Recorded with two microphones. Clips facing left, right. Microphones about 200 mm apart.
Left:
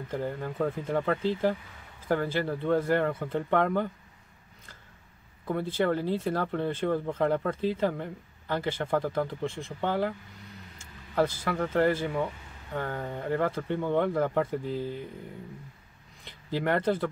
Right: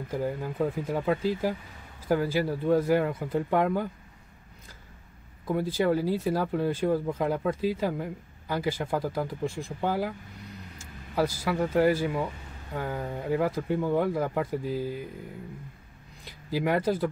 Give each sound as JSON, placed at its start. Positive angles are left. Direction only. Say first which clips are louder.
{"t": 0.1, "sound": "speech", "louder": "right 2 dB", "side_deg": -10}
{"t": 5.5, "sound": "speech", "louder": "right 2 dB", "side_deg": -10}
{"t": 16.3, "sound": "speech", "louder": "right 1 dB", "side_deg": -10}